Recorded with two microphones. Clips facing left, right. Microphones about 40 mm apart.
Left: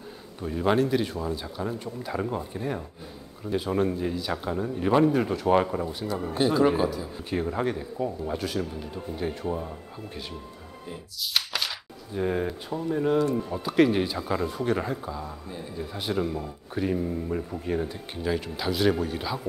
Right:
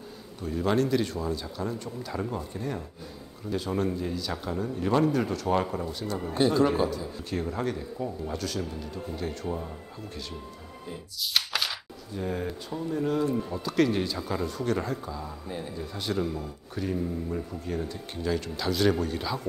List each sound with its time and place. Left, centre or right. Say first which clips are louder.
0.4 s speech: left 2 dB; centre
10.9 s music: even; centre
12.1 s speech: left 5 dB; left